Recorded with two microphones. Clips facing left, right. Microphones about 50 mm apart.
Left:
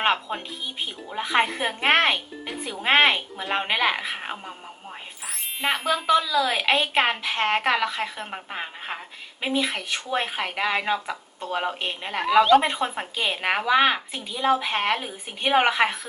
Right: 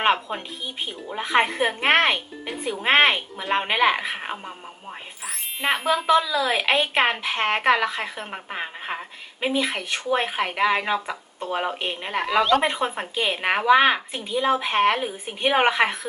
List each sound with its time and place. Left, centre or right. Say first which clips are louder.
0.0 s speech: right 2 dB; centre
5.6 s speech: right 2 dB; centre
8.3 s speech: right 2 dB; centre